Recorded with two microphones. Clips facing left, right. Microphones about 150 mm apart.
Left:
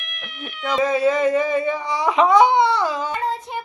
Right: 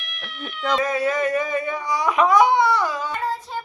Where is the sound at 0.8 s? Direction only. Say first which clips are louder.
Left 6 dB; 20° left (ahead or behind).